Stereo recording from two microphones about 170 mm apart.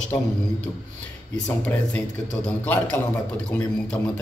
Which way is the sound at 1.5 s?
10° left (ahead or behind).